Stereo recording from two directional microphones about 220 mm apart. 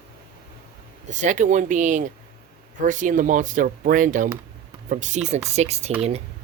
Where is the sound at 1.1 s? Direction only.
35° right (ahead or behind).